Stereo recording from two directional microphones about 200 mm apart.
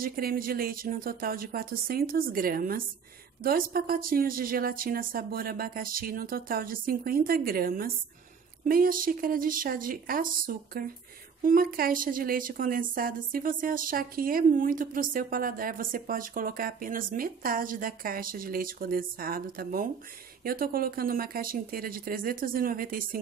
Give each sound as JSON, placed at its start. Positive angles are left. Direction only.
{"t": 0.0, "sound": "a woman's voice", "side_deg": -45}